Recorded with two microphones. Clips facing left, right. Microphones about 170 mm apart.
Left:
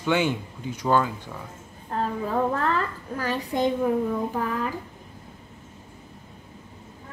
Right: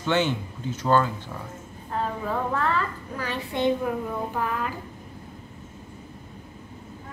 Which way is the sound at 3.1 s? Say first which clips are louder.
Left 3 dB; 40° left (ahead or behind).